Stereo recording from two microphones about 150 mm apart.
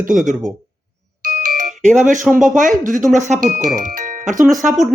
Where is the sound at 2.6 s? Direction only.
60° right (ahead or behind).